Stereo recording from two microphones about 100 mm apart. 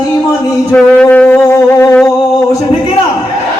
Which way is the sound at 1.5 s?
25° left (ahead or behind).